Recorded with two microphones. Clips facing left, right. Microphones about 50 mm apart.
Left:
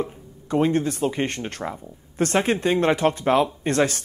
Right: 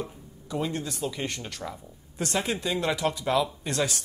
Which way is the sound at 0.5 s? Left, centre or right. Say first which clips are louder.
Left 10 dB; left.